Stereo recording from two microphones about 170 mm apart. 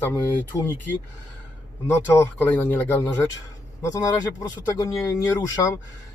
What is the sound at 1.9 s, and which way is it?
Speech, 15° left (ahead or behind).